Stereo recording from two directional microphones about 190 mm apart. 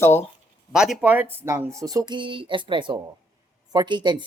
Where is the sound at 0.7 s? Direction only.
5° right (ahead or behind).